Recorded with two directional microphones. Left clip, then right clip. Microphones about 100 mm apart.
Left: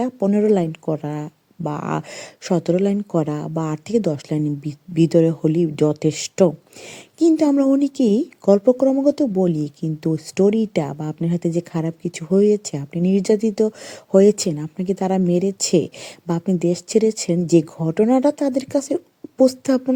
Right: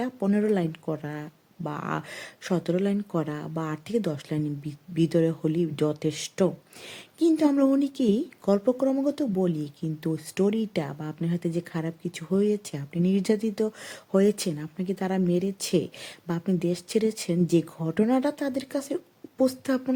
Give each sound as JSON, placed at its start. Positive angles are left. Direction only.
{"t": 0.3, "sound": "speech", "side_deg": 30}